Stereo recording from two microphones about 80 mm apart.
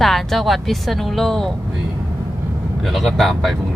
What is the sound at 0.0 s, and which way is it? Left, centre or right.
Speech, centre.